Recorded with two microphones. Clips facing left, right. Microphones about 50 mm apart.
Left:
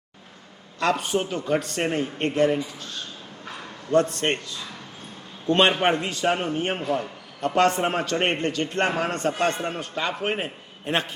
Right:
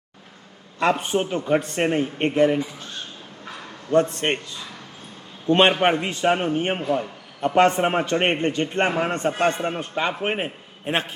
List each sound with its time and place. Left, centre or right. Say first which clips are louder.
0.8 s speech: right 2 dB; centre
3.4 s bow-wow: even; centre
3.9 s a man's voice: right 1 dB; right